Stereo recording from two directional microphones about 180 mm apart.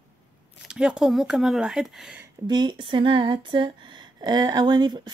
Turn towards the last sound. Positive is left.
turn(degrees=-25)  # may be behind; listen again after turning